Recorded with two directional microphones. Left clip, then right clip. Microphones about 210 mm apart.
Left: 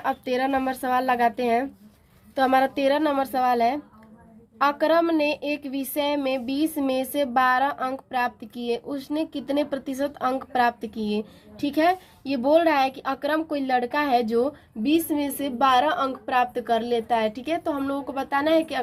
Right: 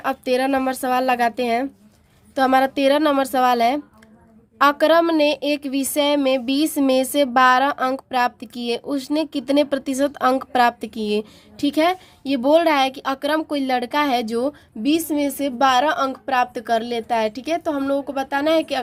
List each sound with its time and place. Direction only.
0.0 s a woman's voice: 25° right (ahead or behind)